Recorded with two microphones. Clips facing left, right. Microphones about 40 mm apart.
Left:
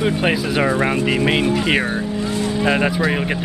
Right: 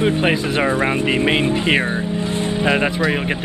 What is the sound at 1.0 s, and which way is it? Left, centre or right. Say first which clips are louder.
Speech: even; right.